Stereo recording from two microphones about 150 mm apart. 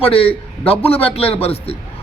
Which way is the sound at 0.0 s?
40° left (ahead or behind).